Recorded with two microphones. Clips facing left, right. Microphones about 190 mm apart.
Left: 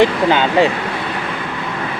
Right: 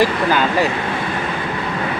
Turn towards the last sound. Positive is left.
turn(degrees=25)  # may be behind; listen again after turning